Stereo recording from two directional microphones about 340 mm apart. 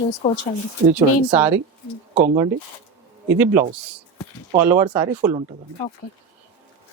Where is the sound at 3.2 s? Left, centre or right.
Centre.